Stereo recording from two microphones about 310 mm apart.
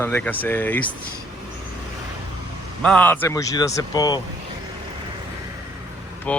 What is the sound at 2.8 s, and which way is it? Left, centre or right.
Speech, centre.